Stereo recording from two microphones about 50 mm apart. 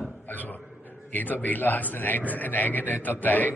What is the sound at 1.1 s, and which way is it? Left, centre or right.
A man's voice, left.